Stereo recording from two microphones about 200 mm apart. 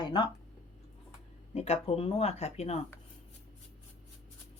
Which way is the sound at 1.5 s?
30° left (ahead or behind).